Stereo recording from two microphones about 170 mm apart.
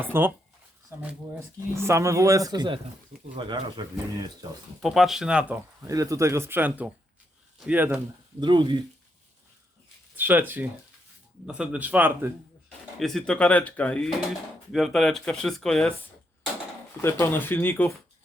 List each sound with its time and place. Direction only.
0.0 s speech: 10° right (ahead or behind)
4.8 s speech: centre (ahead or behind)
5.9 s speech: 20° right (ahead or behind)
8.4 s speech: 25° right (ahead or behind)
10.2 s speech: 10° right (ahead or behind)
13.0 s speech: centre (ahead or behind)
17.0 s speech: 15° left (ahead or behind)